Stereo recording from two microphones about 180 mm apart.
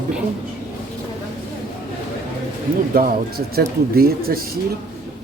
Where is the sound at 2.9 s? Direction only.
55° right (ahead or behind).